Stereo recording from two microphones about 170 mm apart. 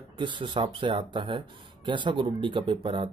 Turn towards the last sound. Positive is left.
turn(degrees=-30)  # may be behind; listen again after turning